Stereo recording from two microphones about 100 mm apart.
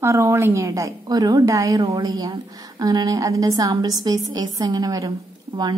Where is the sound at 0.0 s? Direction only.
25° right (ahead or behind).